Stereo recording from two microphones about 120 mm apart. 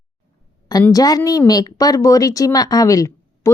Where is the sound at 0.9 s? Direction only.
30° left (ahead or behind).